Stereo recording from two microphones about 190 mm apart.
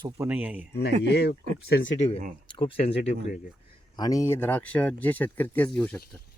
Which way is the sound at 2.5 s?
25° left (ahead or behind).